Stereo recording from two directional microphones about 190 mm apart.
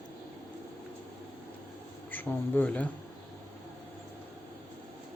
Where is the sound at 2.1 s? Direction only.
10° left (ahead or behind).